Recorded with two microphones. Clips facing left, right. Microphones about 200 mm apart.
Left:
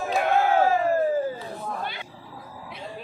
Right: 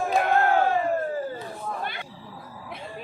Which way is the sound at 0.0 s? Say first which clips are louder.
Even; centre (ahead or behind).